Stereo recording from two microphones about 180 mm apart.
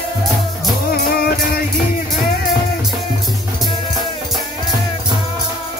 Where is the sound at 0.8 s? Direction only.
60° left (ahead or behind).